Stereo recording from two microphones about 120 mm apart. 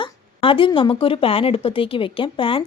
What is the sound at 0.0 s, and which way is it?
Speech, 45° left (ahead or behind).